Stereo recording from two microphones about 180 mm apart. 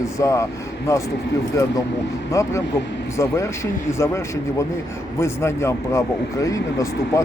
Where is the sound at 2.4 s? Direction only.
15° left (ahead or behind).